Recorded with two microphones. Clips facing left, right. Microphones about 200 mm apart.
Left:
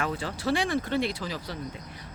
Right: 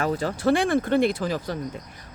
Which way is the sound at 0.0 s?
40° right (ahead or behind).